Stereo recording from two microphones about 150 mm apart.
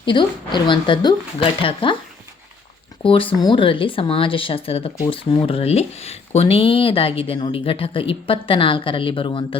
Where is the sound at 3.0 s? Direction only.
35° left (ahead or behind).